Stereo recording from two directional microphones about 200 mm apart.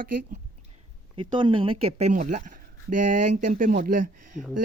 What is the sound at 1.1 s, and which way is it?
Speech, 25° right (ahead or behind).